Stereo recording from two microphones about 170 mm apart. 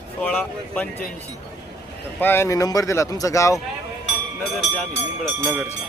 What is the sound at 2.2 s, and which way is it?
Speech, 15° left (ahead or behind).